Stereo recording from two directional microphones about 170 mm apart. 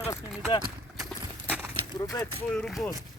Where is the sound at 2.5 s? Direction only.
5° left (ahead or behind).